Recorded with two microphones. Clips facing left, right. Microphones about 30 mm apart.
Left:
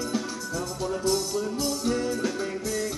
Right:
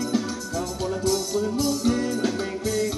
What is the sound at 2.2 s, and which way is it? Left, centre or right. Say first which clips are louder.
Music: right 3 dB; right.